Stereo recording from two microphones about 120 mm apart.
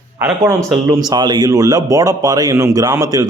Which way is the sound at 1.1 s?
35° right (ahead or behind).